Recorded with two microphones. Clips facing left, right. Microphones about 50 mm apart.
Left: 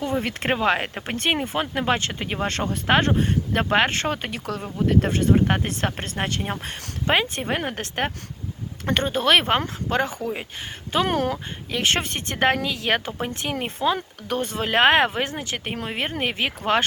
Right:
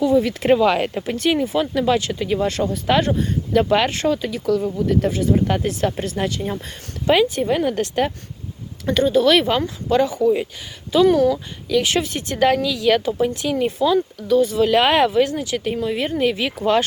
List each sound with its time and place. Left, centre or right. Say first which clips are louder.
0.0 s speech: right 8 dB; left
0.6 s speech: right 5 dB; left
1.0 s speech: right 5 dB; left
2.8 s speech: even; left